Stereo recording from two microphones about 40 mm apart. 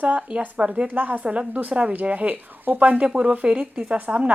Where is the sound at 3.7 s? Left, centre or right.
Right.